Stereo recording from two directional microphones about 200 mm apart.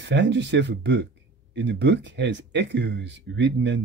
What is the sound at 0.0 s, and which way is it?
Speech, 60° right (ahead or behind).